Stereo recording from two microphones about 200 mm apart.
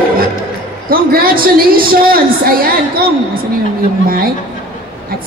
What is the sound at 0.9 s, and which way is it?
A woman's voice, 45° right (ahead or behind).